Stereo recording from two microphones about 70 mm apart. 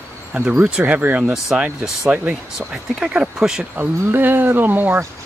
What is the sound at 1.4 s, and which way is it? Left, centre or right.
Speech, centre.